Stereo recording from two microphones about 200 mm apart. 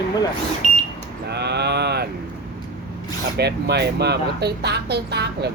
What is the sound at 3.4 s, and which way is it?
Speech, 55° right (ahead or behind).